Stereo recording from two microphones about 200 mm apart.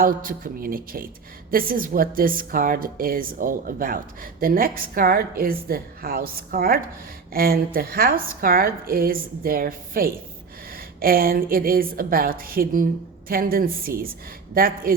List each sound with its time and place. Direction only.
0.0 s a woman's voice: 45° right (ahead or behind)